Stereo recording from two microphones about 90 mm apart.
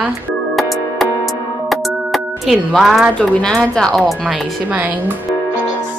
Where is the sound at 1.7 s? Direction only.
Centre (ahead or behind).